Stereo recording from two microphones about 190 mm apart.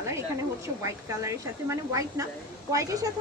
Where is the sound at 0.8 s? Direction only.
15° right (ahead or behind).